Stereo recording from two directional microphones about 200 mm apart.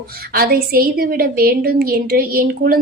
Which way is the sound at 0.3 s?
50° right (ahead or behind).